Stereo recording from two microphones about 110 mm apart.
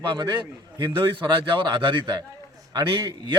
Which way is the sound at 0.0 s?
40° right (ahead or behind).